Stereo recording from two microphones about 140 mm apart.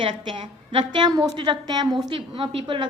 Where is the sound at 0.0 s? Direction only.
35° right (ahead or behind).